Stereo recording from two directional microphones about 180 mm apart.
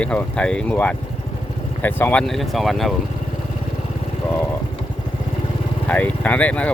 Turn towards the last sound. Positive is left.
turn(degrees=5)  # may be behind; listen again after turning